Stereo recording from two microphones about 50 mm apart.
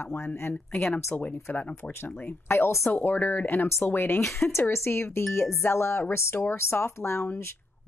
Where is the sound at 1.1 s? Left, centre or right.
Left.